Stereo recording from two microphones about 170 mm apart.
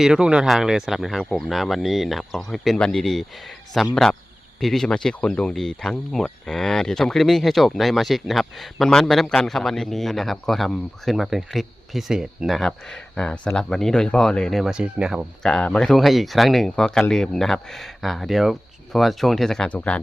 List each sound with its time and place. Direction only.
0.0 s speech: 5° right (ahead or behind)
15.4 s speech: 5° left (ahead or behind)